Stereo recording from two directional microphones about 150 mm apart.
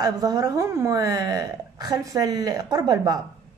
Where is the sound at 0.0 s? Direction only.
25° right (ahead or behind).